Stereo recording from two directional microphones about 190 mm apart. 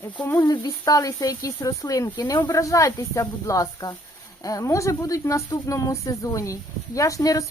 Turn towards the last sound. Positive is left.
turn(degrees=15)  # may be behind; listen again after turning